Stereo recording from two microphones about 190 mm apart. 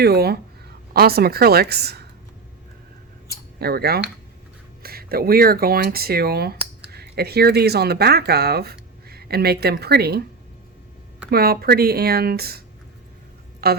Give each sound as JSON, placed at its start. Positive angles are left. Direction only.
{"t": 0.0, "sound": "speech", "side_deg": -55}
{"t": 3.6, "sound": "speech", "side_deg": -55}
{"t": 11.3, "sound": "speech", "side_deg": -55}